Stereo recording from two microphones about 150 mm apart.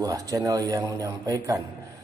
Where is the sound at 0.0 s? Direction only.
20° right (ahead or behind).